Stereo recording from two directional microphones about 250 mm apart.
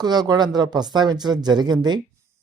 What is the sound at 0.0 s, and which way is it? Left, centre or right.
Speech, centre.